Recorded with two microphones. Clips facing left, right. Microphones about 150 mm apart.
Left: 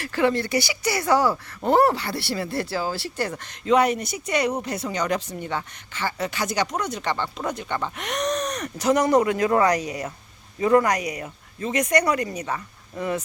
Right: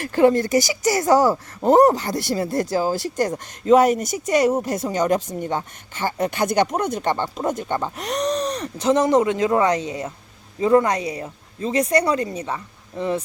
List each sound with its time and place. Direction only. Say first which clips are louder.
0.0 s speech: right 6 dB; 45° right (ahead or behind)
7.9 s speech: right 2 dB; 35° right (ahead or behind)